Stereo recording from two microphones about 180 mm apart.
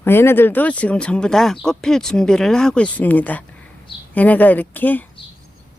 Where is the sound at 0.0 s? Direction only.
15° left (ahead or behind).